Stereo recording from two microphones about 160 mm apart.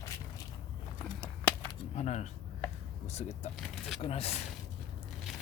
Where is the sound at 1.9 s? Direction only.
45° left (ahead or behind).